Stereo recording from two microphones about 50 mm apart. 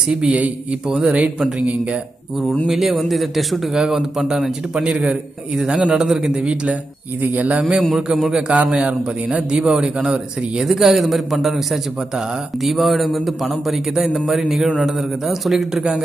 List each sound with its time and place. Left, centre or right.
0.1 s a man's voice: centre
1.6 s a man's voice: right
2.6 s a man's voice: centre
4.8 s a man's voice: right
6.4 s a man's voice: right
7.9 s a man's voice: centre
8.5 s a man's voice: right
10.6 s a man's voice: centre
15.7 s a man's voice: centre